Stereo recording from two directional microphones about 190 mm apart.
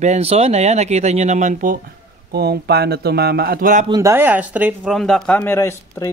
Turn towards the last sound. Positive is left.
turn(degrees=15)  # may be behind; listen again after turning